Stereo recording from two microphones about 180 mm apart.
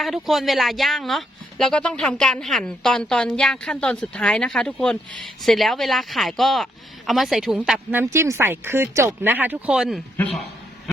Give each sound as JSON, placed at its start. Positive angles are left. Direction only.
{"t": 0.0, "sound": "speech", "side_deg": 0}
{"t": 8.0, "sound": "speech", "side_deg": -15}